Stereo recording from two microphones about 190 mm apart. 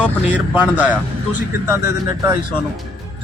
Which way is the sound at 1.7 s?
15° right (ahead or behind).